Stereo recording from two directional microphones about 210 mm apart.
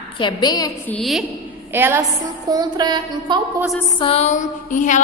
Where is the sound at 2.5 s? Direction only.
20° right (ahead or behind).